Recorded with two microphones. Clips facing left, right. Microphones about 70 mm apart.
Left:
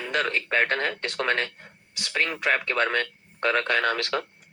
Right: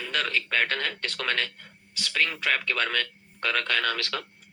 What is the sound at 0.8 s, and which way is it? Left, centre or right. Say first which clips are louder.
Speech: left 3 dB; centre.